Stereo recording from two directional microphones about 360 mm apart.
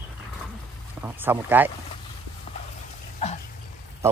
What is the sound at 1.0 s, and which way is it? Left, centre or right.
Speech, centre.